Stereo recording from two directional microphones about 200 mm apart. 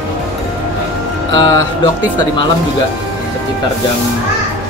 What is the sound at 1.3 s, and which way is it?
Speech, 20° left (ahead or behind).